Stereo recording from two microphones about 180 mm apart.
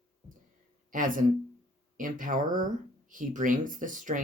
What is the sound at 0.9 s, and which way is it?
Speech, 50° right (ahead or behind).